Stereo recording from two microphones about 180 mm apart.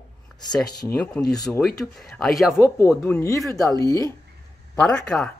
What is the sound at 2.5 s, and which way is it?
A woman's voice, 15° left (ahead or behind).